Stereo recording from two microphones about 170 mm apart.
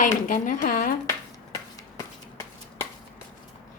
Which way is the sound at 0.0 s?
50° left (ahead or behind).